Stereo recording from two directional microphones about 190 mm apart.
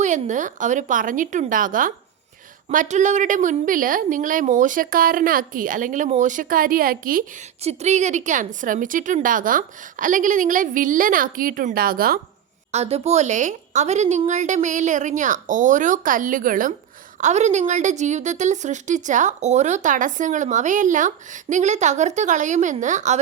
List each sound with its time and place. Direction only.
0.0 s a woman's voice: 40° right (ahead or behind)
7.6 s a woman's voice: 35° right (ahead or behind)
12.7 s a woman's voice: 35° right (ahead or behind)